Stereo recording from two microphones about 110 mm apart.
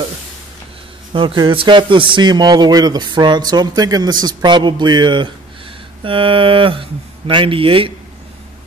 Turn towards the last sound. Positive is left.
turn(degrees=-55)  # may be behind; listen again after turning